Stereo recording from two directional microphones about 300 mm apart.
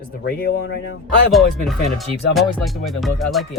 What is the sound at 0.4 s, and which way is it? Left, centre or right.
Speech, left.